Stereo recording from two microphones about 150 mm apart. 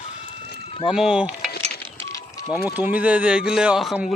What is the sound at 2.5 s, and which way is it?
Speech, 15° right (ahead or behind).